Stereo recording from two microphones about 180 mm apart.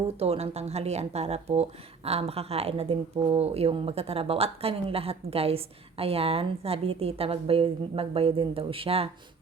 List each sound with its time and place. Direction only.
0.2 s speech: 35° right (ahead or behind)